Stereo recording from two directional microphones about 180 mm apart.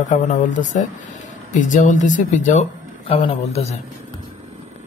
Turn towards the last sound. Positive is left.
turn(degrees=35)  # may be behind; listen again after turning